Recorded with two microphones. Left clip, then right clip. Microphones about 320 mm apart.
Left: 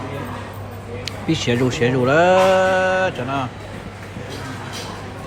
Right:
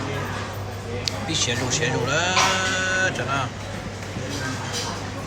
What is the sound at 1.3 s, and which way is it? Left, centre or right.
Speech, left.